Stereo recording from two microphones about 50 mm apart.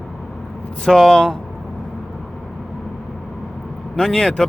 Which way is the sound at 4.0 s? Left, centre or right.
Centre.